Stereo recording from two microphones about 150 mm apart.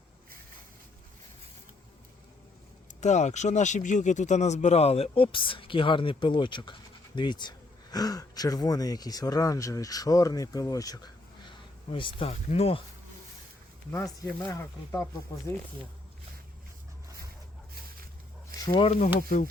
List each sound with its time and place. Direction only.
3.0 s speech: 50° left (ahead or behind)
13.9 s speech: 25° left (ahead or behind)
18.6 s speech: 30° left (ahead or behind)
18.9 s speech: 45° left (ahead or behind)